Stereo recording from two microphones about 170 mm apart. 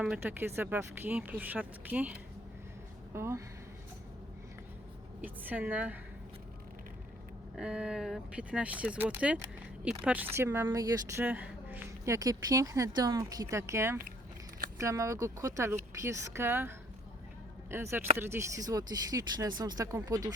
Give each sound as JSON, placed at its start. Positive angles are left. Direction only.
{"t": 0.0, "sound": "a woman's voice", "side_deg": -10}
{"t": 3.2, "sound": "a woman's voice", "side_deg": -15}
{"t": 5.2, "sound": "a woman's voice", "side_deg": -10}
{"t": 7.5, "sound": "a woman's voice", "side_deg": -5}